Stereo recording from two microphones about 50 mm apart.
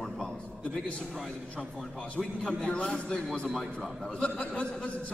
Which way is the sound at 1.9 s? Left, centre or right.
Left.